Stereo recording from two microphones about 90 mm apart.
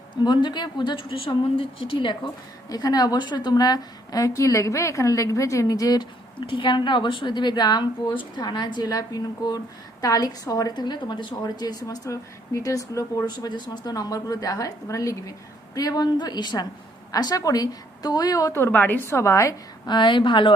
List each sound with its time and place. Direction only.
0.2 s a woman's voice: 55° left (ahead or behind)
2.6 s a woman's voice: 45° left (ahead or behind)
6.4 s a woman's voice: 65° left (ahead or behind); by 13.2 s 40° left (ahead or behind)
13.2 s a woman's voice: 55° left (ahead or behind); by 18.6 s 40° left (ahead or behind)
18.6 s a woman's voice: 20° left (ahead or behind)
19.9 s a woman's voice: 60° left (ahead or behind)